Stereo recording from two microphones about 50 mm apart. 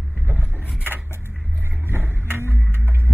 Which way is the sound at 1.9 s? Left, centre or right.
Right.